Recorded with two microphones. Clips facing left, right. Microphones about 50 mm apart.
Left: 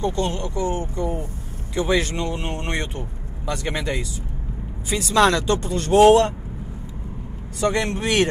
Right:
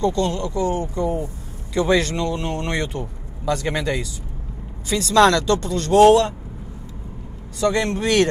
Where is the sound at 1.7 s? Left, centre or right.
Centre; by 4.1 s left.